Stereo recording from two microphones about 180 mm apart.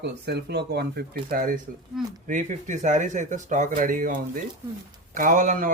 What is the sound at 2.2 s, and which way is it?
Speech, 45° right (ahead or behind).